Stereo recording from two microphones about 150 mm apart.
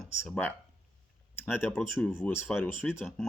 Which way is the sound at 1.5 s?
15° left (ahead or behind).